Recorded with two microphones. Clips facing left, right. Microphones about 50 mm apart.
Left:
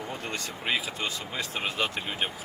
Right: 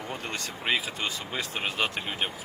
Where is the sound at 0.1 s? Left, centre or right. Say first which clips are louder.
Even; right.